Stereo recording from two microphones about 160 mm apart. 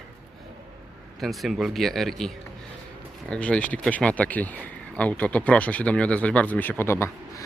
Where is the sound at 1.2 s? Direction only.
Centre (ahead or behind).